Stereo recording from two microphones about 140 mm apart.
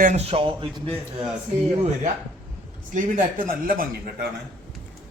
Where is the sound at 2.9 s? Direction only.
85° right.